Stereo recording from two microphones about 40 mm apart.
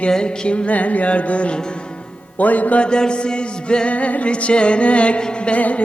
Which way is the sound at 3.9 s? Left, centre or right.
Left.